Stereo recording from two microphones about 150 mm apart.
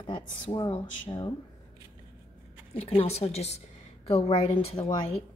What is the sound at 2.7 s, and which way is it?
A woman's voice, 45° left (ahead or behind).